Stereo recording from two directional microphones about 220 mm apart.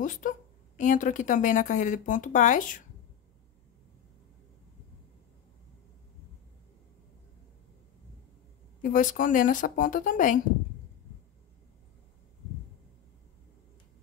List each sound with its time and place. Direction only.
0.0 s a woman's voice: 35° left (ahead or behind)
8.8 s a woman's voice: 35° left (ahead or behind)